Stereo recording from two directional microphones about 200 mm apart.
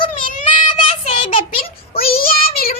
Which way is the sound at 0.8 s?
25° left (ahead or behind).